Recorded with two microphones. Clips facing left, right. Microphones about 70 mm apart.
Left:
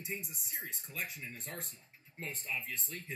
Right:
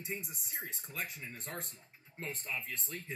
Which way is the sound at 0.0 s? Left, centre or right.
Centre.